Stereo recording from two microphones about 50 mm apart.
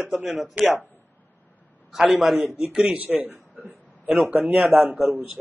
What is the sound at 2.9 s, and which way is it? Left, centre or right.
A man's voice, right.